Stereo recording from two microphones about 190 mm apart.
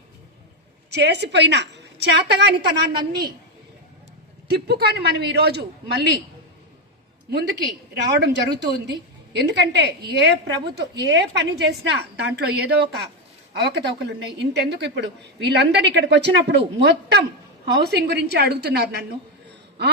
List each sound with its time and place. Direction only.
0.9 s a woman's voice: 60° right (ahead or behind)
4.4 s a woman's voice: 60° right (ahead or behind)
8.2 s a woman's voice: 65° right (ahead or behind)